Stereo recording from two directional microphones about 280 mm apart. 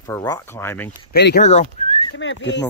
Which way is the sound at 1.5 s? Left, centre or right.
Left.